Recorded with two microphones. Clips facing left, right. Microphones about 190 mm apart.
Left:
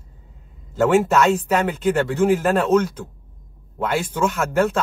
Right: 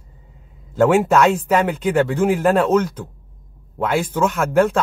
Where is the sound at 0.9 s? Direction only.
5° right (ahead or behind).